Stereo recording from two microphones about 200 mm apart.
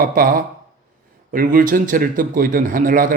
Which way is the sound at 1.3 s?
45° right (ahead or behind).